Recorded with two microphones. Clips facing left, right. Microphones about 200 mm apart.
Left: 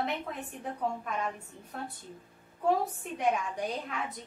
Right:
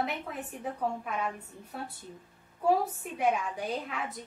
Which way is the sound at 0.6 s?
5° right (ahead or behind).